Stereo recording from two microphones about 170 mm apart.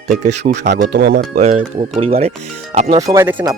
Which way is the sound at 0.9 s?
80° right.